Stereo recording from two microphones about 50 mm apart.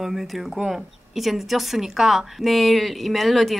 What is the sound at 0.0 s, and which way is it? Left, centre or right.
A woman's voice, centre.